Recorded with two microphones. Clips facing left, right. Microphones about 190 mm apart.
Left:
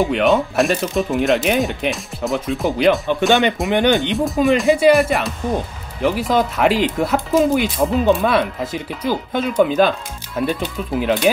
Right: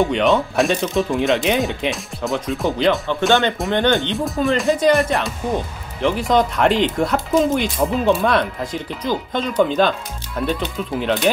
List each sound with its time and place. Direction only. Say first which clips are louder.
0.0 s speech: left 1 dB; centre (ahead or behind)
3.1 s speech: left 2 dB; 15° left (ahead or behind)
4.6 s speech: left 2 dB; 5° left (ahead or behind)